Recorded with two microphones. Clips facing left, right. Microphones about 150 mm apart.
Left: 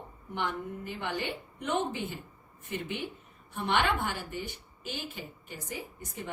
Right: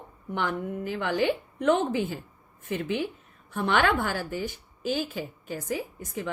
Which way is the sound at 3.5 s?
90° right.